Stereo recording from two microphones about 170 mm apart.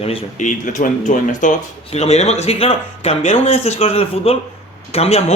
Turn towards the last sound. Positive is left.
turn(degrees=35)  # may be behind; listen again after turning